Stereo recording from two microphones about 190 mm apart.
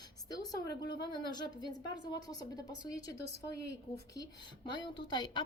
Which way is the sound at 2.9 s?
20° left (ahead or behind).